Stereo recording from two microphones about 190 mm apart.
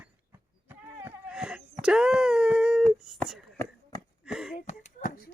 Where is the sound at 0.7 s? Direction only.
5° right (ahead or behind).